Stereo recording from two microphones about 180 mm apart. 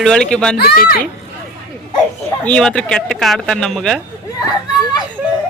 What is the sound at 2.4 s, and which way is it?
Speech, 5° left (ahead or behind).